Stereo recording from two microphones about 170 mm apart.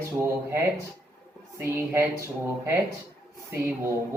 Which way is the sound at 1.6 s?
15° right (ahead or behind).